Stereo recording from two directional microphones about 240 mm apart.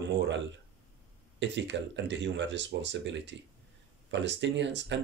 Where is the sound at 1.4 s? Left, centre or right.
Right.